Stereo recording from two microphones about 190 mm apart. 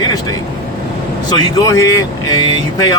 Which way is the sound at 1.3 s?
20° left (ahead or behind).